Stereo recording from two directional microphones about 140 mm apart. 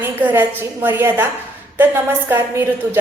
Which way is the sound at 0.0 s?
15° right (ahead or behind).